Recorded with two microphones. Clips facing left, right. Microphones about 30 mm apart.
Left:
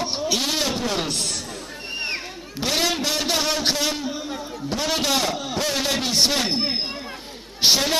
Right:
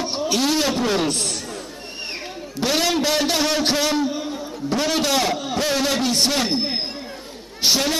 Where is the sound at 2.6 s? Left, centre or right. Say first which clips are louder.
Right 3 dB; centre.